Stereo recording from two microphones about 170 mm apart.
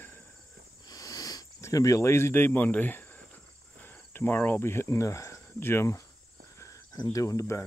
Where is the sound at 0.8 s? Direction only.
20° left (ahead or behind).